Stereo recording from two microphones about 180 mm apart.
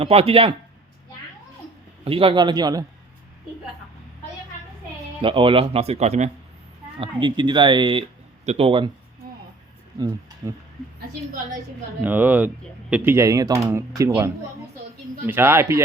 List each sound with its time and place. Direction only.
0.0 s speech: 35° right (ahead or behind)
2.0 s speech: 30° right (ahead or behind)
5.2 s speech: 30° right (ahead or behind)
7.0 s speech: 25° right (ahead or behind)
10.4 s speech: 15° right (ahead or behind)
12.0 s speech: 10° right (ahead or behind)